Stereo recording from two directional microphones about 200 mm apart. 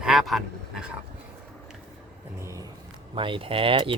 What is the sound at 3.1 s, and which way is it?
Speech, 25° right (ahead or behind).